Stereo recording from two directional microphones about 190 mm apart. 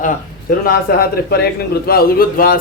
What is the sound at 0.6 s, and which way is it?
A man's voice, 55° left (ahead or behind).